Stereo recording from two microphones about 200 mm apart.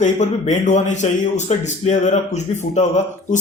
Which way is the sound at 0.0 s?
35° left (ahead or behind).